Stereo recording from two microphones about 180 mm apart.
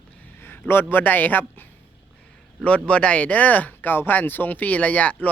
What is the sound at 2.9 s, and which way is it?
Speech, 5° left (ahead or behind).